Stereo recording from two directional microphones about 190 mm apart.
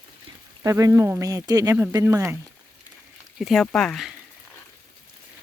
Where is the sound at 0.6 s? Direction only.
15° right (ahead or behind).